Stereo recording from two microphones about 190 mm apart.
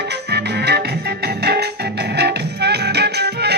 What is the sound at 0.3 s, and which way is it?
Music, 60° right (ahead or behind).